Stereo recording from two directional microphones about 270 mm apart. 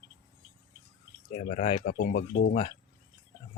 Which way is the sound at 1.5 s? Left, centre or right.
Left.